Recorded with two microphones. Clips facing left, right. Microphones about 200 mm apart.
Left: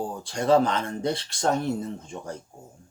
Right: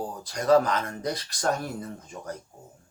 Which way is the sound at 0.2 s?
30° left (ahead or behind).